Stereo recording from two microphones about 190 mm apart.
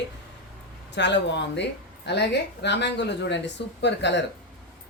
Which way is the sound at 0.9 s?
65° left (ahead or behind).